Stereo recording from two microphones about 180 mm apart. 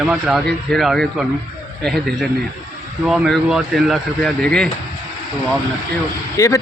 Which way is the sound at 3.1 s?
Centre (ahead or behind).